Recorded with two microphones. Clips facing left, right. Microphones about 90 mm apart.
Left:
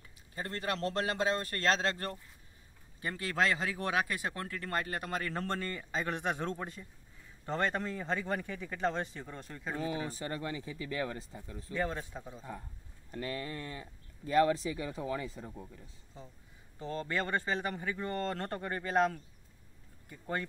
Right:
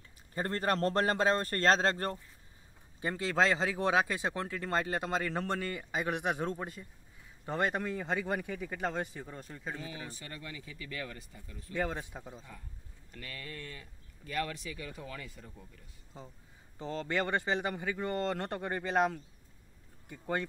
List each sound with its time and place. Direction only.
0.3 s a man's voice: 40° right (ahead or behind)
3.0 s speech: 25° right (ahead or behind); by 9.8 s 5° right (ahead or behind)
9.8 s speech: 35° left (ahead or behind)
11.7 s speech: 15° right (ahead or behind)
12.5 s speech: 30° left (ahead or behind)
16.7 s speech: 25° right (ahead or behind)